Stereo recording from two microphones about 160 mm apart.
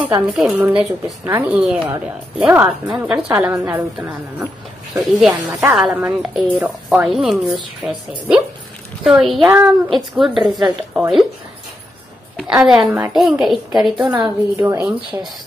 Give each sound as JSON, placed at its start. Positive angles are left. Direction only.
{"t": 0.3, "sound": "speech", "side_deg": -10}
{"t": 5.8, "sound": "a woman's voice", "side_deg": -5}
{"t": 12.6, "sound": "a woman's voice", "side_deg": 0}